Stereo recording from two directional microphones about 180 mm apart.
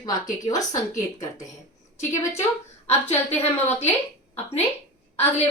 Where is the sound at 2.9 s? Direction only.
15° left (ahead or behind).